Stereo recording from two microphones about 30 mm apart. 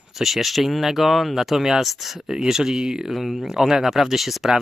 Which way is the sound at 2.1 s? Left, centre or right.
Right.